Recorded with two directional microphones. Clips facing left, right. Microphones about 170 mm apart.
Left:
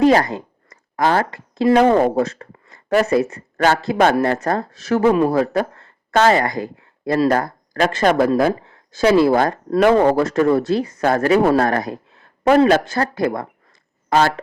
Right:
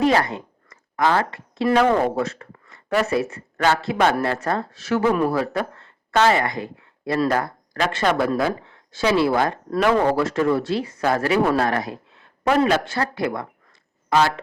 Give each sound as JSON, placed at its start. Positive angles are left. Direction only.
{"t": 0.0, "sound": "a sound", "side_deg": 40}
{"t": 2.0, "sound": "speech", "side_deg": 40}
{"t": 5.3, "sound": "speech", "side_deg": 45}